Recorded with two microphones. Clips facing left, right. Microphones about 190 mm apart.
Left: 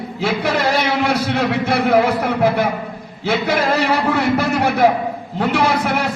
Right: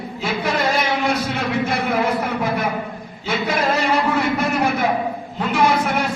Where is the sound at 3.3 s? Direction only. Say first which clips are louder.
Left 3 dB; 70° left (ahead or behind).